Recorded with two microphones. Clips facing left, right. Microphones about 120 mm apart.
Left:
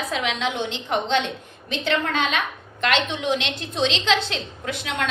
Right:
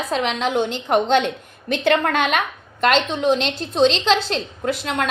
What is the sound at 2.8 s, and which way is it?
A woman's voice, 40° right (ahead or behind).